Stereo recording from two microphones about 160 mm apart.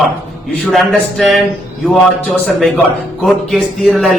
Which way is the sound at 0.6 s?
Centre (ahead or behind).